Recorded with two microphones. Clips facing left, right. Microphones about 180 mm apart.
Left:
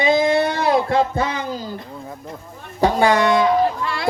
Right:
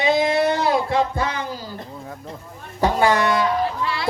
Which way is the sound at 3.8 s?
50° left (ahead or behind).